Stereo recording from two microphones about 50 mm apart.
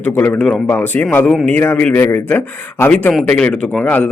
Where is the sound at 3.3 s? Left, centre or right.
Left.